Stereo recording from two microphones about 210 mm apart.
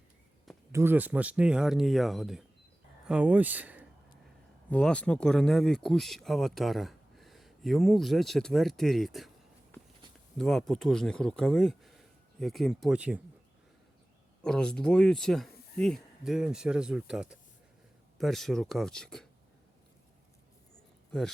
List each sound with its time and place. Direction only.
0.7 s speech: 10° right (ahead or behind)
4.7 s speech: 5° left (ahead or behind)
10.3 s speech: centre (ahead or behind)
14.4 s speech: 5° left (ahead or behind)